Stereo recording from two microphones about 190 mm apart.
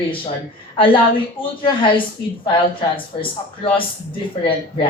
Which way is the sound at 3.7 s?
25° left (ahead or behind).